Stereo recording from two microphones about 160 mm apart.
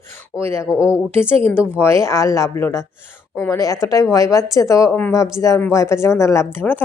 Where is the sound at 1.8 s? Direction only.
15° left (ahead or behind).